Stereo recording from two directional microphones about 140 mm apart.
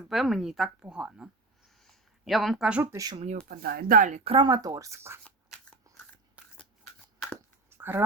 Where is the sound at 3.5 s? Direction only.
85° right; by 4.2 s 65° right (ahead or behind).